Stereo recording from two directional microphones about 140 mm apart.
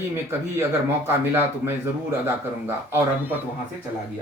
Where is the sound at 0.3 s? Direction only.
15° right (ahead or behind).